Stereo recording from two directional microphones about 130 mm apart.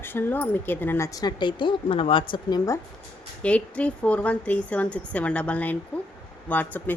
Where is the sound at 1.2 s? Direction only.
35° left (ahead or behind).